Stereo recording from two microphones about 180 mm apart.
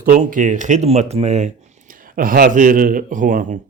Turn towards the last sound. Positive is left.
turn(degrees=-45)  # may be behind; listen again after turning